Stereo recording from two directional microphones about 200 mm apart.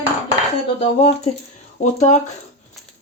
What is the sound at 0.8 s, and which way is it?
Speech, 35° left (ahead or behind).